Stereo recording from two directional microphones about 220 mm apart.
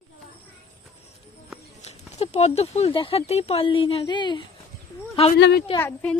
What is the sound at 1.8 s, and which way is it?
Speech, 30° left (ahead or behind).